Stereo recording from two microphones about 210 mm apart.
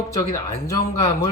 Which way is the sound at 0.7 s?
15° left (ahead or behind).